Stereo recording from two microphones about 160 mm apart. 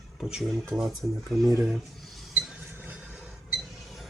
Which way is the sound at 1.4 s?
20° right (ahead or behind).